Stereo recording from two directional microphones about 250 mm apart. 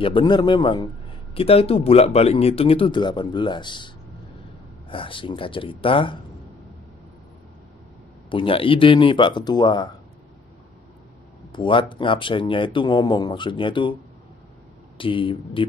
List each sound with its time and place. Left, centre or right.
0.0 s a man's voice: centre
8.3 s speech: left
11.5 s speech: centre
15.0 s speech: centre